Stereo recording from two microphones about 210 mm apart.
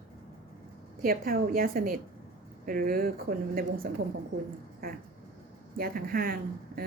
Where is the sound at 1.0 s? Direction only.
45° right (ahead or behind).